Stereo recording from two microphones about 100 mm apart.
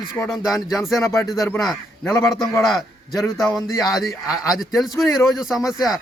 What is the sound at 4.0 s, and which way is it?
Speech, 35° left (ahead or behind).